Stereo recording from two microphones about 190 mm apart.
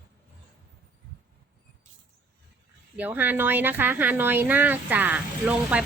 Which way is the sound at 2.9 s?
10° right (ahead or behind).